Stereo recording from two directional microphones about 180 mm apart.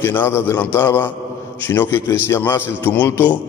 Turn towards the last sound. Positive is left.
turn(degrees=10)  # may be behind; listen again after turning